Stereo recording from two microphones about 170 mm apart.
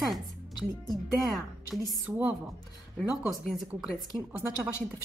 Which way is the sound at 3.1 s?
5° right (ahead or behind).